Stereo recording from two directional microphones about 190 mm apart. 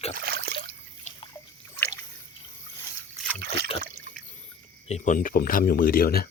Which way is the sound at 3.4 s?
55° right (ahead or behind).